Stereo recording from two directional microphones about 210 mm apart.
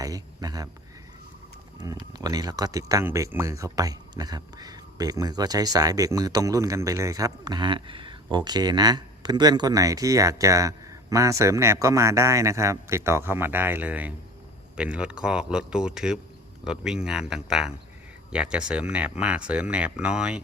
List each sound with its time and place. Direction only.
0.0 s cricket: 15° right (ahead or behind)
1.8 s speech: 20° right (ahead or behind)